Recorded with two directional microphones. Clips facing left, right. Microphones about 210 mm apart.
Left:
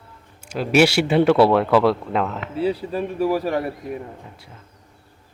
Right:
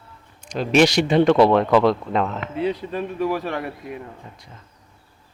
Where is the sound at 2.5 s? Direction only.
30° left (ahead or behind).